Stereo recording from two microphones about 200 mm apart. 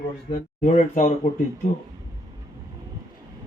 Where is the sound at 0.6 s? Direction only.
40° left (ahead or behind).